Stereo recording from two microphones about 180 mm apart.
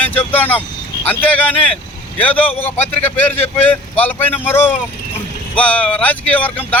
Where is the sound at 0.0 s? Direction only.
10° left (ahead or behind).